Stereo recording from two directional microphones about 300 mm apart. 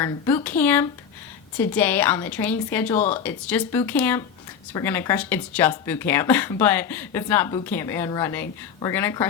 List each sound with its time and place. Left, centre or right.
0.0 s speech: centre